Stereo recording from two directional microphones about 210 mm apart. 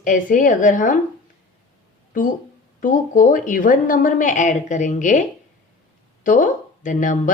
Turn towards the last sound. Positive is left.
turn(degrees=35)  # may be behind; listen again after turning